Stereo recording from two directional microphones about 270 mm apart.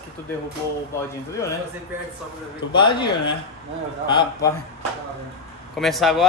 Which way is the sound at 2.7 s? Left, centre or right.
Centre.